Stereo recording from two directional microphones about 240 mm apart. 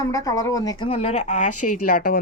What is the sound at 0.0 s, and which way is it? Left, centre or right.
A woman's voice, centre.